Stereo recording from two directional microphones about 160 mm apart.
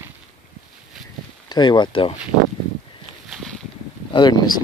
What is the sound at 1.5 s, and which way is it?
Speech, 25° left (ahead or behind).